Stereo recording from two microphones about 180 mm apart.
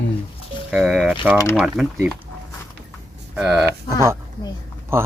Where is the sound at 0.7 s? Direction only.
Centre (ahead or behind).